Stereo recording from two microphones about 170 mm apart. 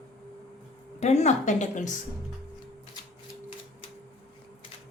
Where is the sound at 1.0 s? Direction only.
40° left (ahead or behind).